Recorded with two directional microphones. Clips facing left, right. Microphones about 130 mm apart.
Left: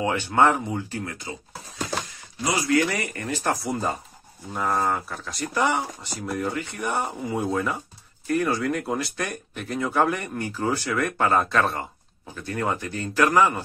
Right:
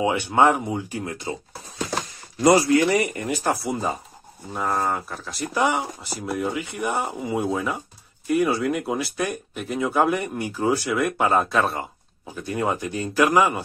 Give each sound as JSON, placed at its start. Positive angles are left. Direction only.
{"t": 0.0, "sound": "speech", "side_deg": -15}
{"t": 2.5, "sound": "speech", "side_deg": -30}